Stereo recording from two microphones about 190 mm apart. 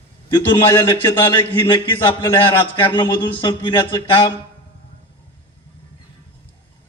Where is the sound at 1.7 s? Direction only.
25° left (ahead or behind).